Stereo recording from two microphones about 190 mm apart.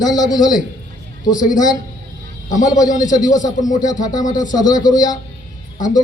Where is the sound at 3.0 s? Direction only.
20° left (ahead or behind).